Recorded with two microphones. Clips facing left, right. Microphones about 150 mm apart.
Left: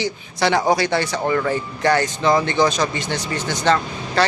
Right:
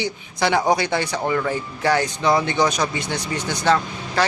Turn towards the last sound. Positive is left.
turn(degrees=-10)  # may be behind; listen again after turning